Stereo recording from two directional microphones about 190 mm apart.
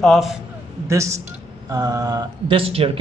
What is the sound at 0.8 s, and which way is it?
A man's voice, 15° right (ahead or behind).